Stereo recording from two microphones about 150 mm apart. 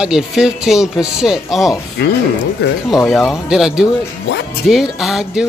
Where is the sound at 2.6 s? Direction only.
90° left.